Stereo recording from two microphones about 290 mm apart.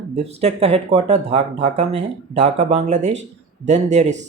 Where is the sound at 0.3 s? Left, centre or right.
Right.